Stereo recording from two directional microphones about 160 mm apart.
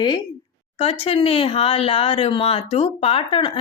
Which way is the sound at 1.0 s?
35° left (ahead or behind).